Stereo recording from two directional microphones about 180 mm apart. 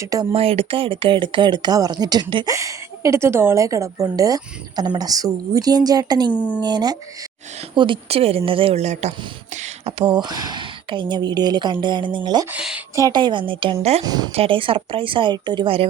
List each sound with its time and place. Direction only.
0.3 s speech: 35° right (ahead or behind)
6.3 s speech: 10° left (ahead or behind)
6.6 s speech: 25° right (ahead or behind); by 9.1 s 40° right (ahead or behind)
9.8 s speech: 25° right (ahead or behind)
12.5 s speech: 5° right (ahead or behind)
13.0 s speech: 20° right (ahead or behind)